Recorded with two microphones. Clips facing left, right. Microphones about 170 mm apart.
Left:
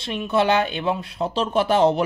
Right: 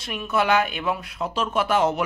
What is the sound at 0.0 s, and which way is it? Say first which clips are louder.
A man's voice: left 3 dB; 25° left (ahead or behind).